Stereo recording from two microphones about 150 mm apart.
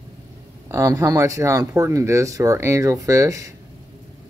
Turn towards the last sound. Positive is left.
turn(degrees=-20)  # may be behind; listen again after turning